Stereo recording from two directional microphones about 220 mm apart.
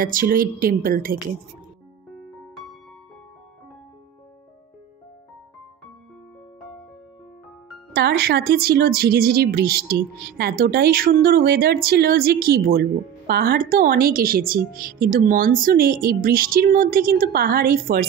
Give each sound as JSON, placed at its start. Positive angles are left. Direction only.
{"t": 0.0, "sound": "speech", "side_deg": -40}
{"t": 7.9, "sound": "speech", "side_deg": -45}